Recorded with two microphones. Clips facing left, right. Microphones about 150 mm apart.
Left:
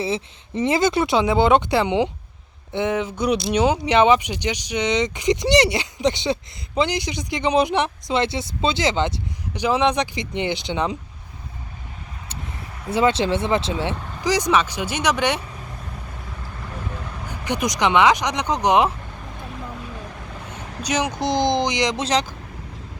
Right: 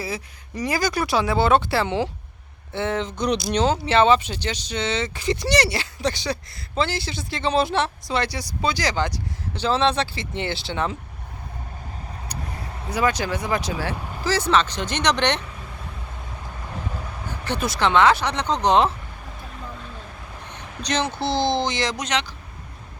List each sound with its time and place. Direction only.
0.0 s speech: 25° left (ahead or behind)
12.9 s speech: 25° left (ahead or behind); by 15.4 s 10° left (ahead or behind)
17.4 s speech: 15° left (ahead or behind)
20.8 s speech: 10° left (ahead or behind)
22.0 s speech: 35° left (ahead or behind)